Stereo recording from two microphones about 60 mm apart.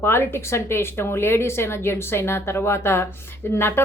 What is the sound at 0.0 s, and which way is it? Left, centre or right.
Speech, left.